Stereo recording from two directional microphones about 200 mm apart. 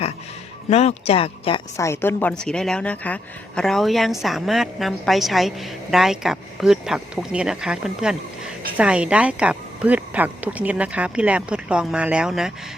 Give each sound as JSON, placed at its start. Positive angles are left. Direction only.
{"t": 0.7, "sound": "speech", "side_deg": 35}
{"t": 1.7, "sound": "a woman's voice", "side_deg": 15}